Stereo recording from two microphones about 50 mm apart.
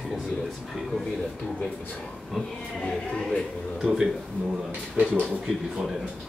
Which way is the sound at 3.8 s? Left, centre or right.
Centre.